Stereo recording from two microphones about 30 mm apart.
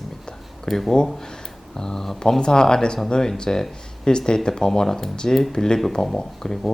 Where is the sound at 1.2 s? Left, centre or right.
Centre.